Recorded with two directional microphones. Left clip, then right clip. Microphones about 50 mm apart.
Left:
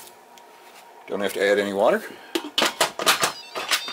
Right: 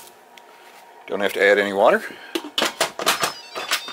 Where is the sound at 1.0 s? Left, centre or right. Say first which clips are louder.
Right 5 dB; right.